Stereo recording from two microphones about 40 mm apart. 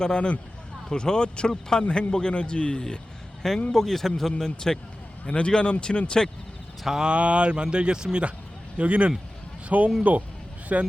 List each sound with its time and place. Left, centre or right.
0.0 s speech: left
3.7 s speech: centre; by 6.2 s left
7.0 s speech: right
8.8 s a man's voice: right
10.7 s a man's voice: right